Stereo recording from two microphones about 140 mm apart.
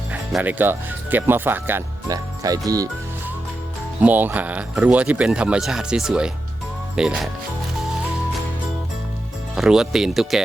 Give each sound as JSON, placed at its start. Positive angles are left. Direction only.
{"t": 0.1, "sound": "speech", "side_deg": -10}
{"t": 2.0, "sound": "speech", "side_deg": -25}
{"t": 4.0, "sound": "speech", "side_deg": -15}
{"t": 9.6, "sound": "speech", "side_deg": -5}